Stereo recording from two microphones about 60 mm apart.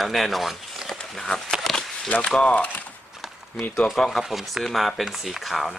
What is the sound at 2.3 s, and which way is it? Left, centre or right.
Speech, centre.